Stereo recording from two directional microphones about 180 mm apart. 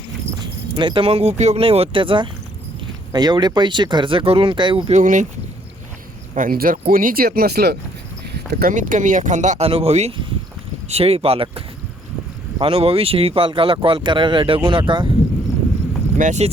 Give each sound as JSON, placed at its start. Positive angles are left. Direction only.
{"t": 0.3, "sound": "speech", "side_deg": -25}
{"t": 4.9, "sound": "speech", "side_deg": -45}
{"t": 6.3, "sound": "speech", "side_deg": -50}
{"t": 8.5, "sound": "speech", "side_deg": -50}
{"t": 16.1, "sound": "speech", "side_deg": -45}